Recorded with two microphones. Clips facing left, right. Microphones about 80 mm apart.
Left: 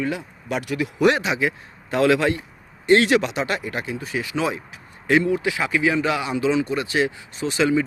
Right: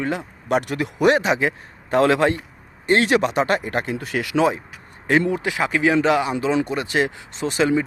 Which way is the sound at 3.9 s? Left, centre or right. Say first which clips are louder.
Right 4 dB; right.